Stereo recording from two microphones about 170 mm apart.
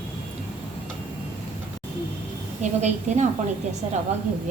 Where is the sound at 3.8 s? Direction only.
40° right (ahead or behind).